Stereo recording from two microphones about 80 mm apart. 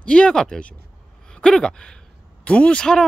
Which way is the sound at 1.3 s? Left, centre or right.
Centre.